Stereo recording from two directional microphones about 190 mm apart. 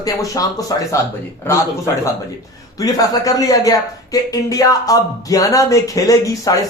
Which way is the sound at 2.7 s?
20° left (ahead or behind).